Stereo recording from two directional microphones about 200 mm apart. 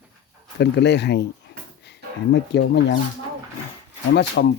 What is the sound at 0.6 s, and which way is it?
Speech, 60° left (ahead or behind).